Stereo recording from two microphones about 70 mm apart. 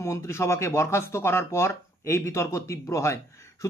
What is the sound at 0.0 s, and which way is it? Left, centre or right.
A man's voice, left.